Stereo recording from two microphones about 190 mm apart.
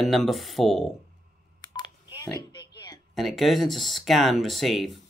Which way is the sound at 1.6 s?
25° left (ahead or behind).